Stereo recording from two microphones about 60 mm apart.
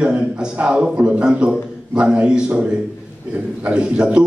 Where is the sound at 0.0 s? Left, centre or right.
Centre.